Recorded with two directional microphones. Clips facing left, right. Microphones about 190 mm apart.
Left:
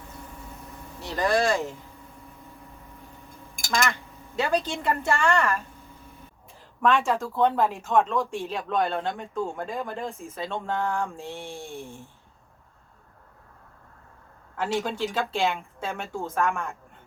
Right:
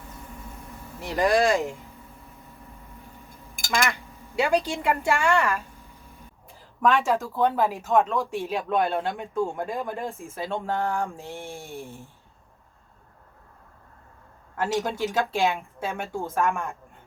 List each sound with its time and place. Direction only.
1.0 s speech: 15° right (ahead or behind)
3.8 s speech: 15° right (ahead or behind)
6.8 s speech: centre (ahead or behind)
8.9 s speech: 15° right (ahead or behind)
11.2 s speech: 15° left (ahead or behind)
11.6 s speech: 5° right (ahead or behind)
14.5 s speech: 10° right (ahead or behind)
15.4 s speech: centre (ahead or behind)